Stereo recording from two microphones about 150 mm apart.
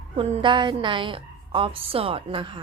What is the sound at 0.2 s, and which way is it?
A woman's voice, 35° right (ahead or behind).